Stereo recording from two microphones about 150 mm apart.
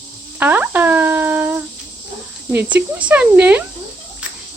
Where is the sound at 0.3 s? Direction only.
10° right (ahead or behind).